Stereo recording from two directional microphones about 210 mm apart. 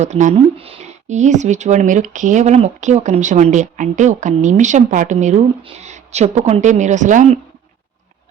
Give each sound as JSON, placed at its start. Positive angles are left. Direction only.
{"t": 0.0, "sound": "speech", "side_deg": -35}